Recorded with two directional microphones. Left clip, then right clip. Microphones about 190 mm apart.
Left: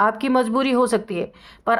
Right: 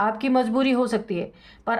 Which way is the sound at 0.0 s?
35° left (ahead or behind).